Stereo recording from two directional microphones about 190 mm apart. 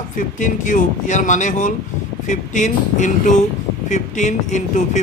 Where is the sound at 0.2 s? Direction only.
40° left (ahead or behind).